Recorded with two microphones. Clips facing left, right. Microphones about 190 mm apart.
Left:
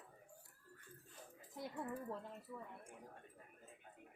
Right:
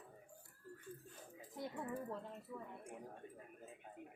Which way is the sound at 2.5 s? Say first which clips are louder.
Right 2 dB; 5° right (ahead or behind).